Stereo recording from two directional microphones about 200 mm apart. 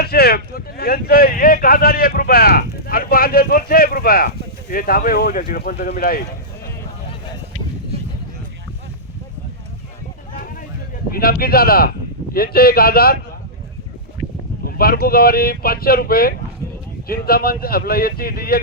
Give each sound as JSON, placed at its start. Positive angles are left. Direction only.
{"t": 0.0, "sound": "speech", "side_deg": 50}
{"t": 10.3, "sound": "a sound", "side_deg": 45}
{"t": 11.1, "sound": "speech", "side_deg": 50}
{"t": 14.6, "sound": "speech", "side_deg": 50}